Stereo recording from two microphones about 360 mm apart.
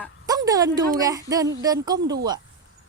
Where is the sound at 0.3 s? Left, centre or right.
Centre.